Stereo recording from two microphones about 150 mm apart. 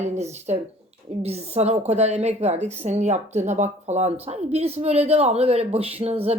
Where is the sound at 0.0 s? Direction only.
50° right (ahead or behind).